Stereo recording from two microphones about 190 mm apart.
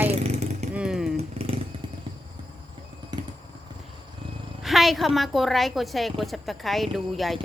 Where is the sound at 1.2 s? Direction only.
30° right (ahead or behind).